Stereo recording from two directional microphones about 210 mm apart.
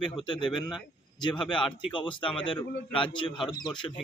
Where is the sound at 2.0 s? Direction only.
25° left (ahead or behind).